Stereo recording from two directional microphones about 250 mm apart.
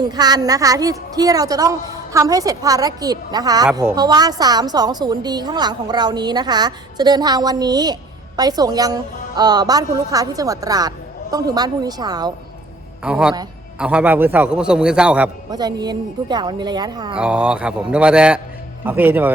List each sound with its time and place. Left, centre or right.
0.1 s a woman's voice: centre
13.1 s a woman's voice: centre
17.2 s a woman's voice: centre